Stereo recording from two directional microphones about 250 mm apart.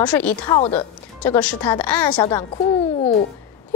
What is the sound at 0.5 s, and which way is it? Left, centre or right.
Speech, left.